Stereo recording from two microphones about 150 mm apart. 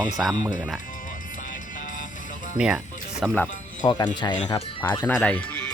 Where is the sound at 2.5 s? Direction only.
5° right (ahead or behind).